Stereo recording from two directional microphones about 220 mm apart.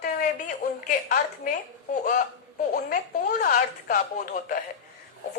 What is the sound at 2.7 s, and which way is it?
A woman's voice, 35° left (ahead or behind).